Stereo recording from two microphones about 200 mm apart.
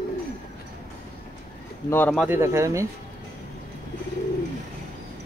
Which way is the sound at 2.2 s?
15° right (ahead or behind).